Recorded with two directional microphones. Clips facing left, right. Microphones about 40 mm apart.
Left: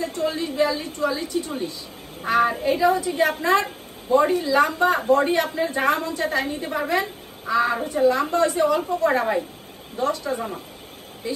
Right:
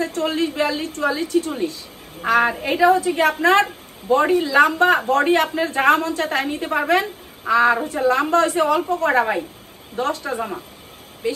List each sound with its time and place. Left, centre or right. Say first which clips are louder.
0.0 s speech: right 4 dB; right